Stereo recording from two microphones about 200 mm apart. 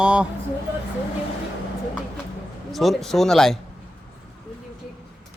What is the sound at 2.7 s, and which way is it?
Speech, centre (ahead or behind).